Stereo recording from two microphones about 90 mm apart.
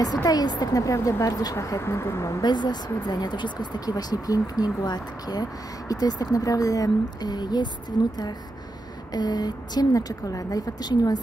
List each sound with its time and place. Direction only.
0.0 s speech: 45° left (ahead or behind)
2.4 s speech: 55° left (ahead or behind)
9.1 s speech: 50° left (ahead or behind)